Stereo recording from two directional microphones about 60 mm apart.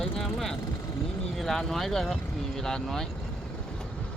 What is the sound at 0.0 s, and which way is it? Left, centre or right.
Vehicle, centre.